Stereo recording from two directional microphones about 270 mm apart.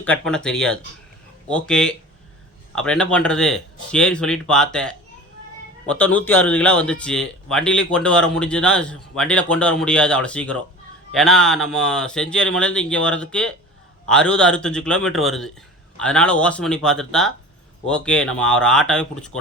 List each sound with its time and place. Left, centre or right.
0.0 s speech: centre